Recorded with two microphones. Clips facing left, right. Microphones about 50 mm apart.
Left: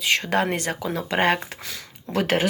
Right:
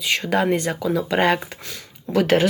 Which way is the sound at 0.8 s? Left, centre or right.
Left.